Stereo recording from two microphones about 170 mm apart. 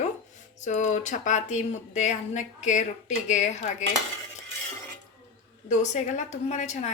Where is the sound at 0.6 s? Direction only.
45° left (ahead or behind).